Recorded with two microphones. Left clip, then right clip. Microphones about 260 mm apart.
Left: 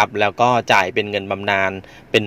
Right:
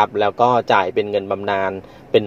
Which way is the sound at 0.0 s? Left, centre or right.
Left.